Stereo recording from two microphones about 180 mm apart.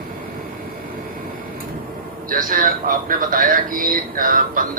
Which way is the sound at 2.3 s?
50° right (ahead or behind).